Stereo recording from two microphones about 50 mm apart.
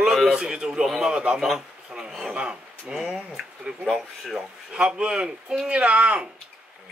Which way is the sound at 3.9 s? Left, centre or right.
Centre.